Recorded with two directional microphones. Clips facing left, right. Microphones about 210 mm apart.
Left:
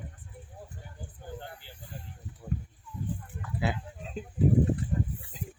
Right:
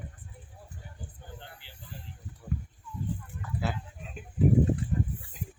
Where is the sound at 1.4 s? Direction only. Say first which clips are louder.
Left 5 dB; 45° left (ahead or behind).